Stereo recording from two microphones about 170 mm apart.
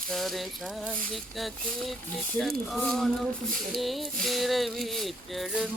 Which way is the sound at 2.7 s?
Centre (ahead or behind).